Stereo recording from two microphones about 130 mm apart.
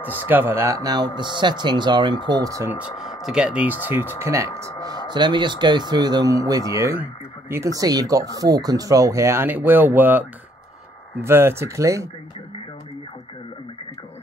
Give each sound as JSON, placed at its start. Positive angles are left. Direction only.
{"t": 0.0, "sound": "speech", "side_deg": 15}
{"t": 0.3, "sound": "speech", "side_deg": -15}
{"t": 3.0, "sound": "speech", "side_deg": -5}
{"t": 5.1, "sound": "speech", "side_deg": -35}